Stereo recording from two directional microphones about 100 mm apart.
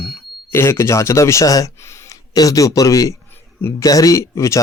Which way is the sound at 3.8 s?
35° left (ahead or behind).